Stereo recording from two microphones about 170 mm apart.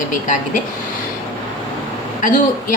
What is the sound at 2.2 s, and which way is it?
Speech, 50° left (ahead or behind).